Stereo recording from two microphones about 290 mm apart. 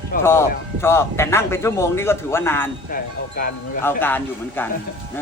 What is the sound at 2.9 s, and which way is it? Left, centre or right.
Speech, left.